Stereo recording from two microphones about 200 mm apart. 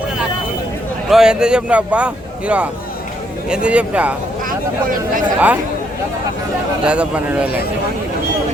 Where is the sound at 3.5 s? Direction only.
5° right (ahead or behind).